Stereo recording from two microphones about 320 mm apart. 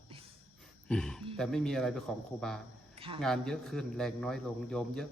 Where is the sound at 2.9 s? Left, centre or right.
Centre.